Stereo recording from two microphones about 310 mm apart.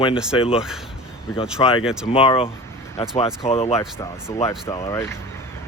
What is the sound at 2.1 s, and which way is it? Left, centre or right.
Speech, centre.